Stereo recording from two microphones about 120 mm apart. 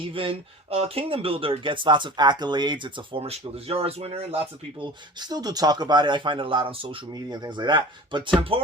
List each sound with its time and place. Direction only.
0.0 s speech: 50° right (ahead or behind)
4.8 s speech: 35° right (ahead or behind)